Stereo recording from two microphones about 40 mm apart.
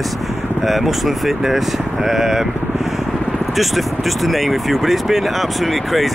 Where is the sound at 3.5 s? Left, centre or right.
Centre.